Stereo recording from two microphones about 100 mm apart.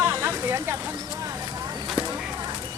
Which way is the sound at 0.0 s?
25° right (ahead or behind).